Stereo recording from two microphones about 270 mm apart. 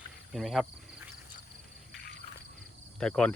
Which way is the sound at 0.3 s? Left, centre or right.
Centre.